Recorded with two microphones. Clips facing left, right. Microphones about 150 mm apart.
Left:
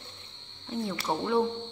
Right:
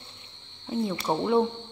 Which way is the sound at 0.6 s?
20° right (ahead or behind).